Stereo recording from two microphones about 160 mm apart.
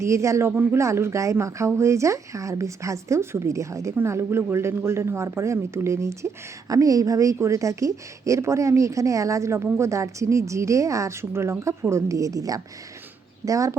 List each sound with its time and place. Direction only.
0.0 s speech: 20° right (ahead or behind)